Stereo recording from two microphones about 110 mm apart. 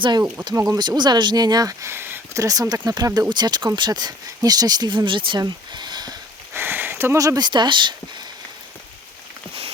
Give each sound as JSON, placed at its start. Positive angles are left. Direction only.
{"t": 0.0, "sound": "speech", "side_deg": -40}
{"t": 0.5, "sound": "speech", "side_deg": -30}
{"t": 0.8, "sound": "speech", "side_deg": -40}
{"t": 6.5, "sound": "speech", "side_deg": -20}